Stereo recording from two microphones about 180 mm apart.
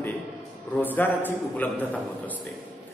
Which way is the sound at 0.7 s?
10° left (ahead or behind).